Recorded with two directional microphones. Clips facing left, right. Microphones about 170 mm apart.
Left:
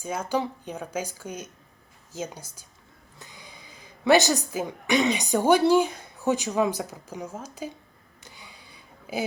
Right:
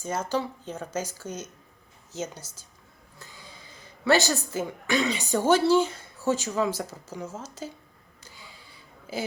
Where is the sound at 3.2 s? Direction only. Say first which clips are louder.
Even; 15° left (ahead or behind).